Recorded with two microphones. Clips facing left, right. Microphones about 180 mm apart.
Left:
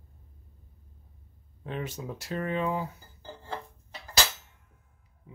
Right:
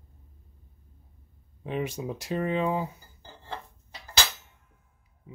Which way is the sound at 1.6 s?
15° right (ahead or behind).